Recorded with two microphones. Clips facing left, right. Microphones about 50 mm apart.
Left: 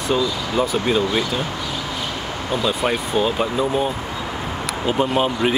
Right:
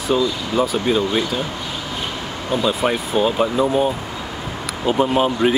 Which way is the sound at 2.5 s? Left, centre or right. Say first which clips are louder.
Right 2 dB; centre.